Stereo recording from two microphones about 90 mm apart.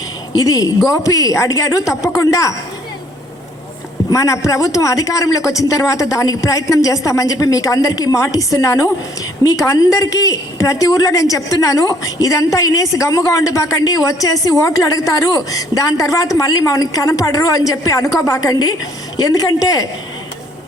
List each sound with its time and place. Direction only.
0.3 s a woman's voice: 40° left (ahead or behind)
4.1 s a woman's voice: 40° left (ahead or behind)